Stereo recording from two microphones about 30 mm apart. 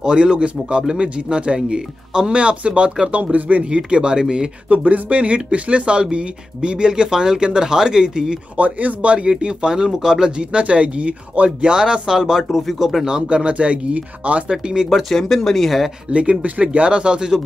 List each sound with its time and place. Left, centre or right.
0.0 s a man's voice: right
2.3 s a man's voice: right
3.6 s speech: right
4.6 s speech: right
8.5 s speech: right
9.9 s speech: centre
10.3 s a man's voice: right
11.6 s speech: right; by 13.0 s centre
13.0 s a man's voice: right
14.5 s speech: right
14.9 s speech: centre
15.1 s speech: centre
16.1 s speech: right
16.8 s a man's voice: right